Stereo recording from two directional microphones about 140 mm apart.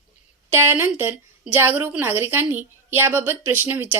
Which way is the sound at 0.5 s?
15° right (ahead or behind).